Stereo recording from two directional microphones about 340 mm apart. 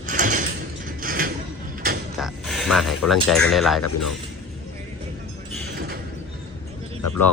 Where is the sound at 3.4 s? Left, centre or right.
Centre.